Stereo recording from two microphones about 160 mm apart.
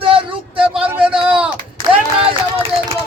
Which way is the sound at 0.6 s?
5° right (ahead or behind).